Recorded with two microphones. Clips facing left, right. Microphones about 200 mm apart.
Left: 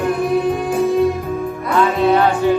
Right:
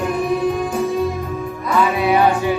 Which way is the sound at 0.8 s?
Centre (ahead or behind).